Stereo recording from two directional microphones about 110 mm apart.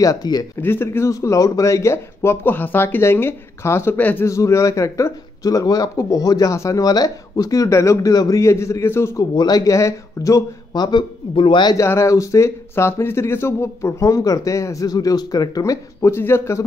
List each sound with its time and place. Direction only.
0.0 s a man's voice: 35° left (ahead or behind)
0.6 s speech: 20° left (ahead or behind)
9.3 s a man's voice: 40° left (ahead or behind)
11.7 s speech: 25° left (ahead or behind)